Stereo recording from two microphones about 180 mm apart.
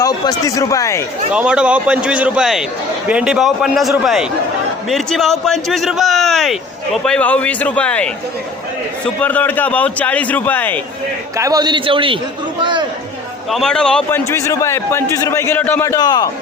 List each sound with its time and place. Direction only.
0.0 s a man's voice: 20° left (ahead or behind)
1.3 s a man's voice: 5° right (ahead or behind); by 10.8 s 10° left (ahead or behind)
11.3 s a man's voice: 20° right (ahead or behind)
13.5 s a man's voice: 5° left (ahead or behind)
14.3 s a man's voice: 15° left (ahead or behind)